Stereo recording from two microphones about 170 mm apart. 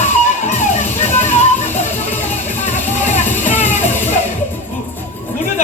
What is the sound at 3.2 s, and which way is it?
Music, 10° left (ahead or behind).